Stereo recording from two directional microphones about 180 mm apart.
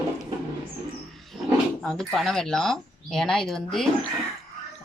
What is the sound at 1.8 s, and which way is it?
Speech, 5° left (ahead or behind).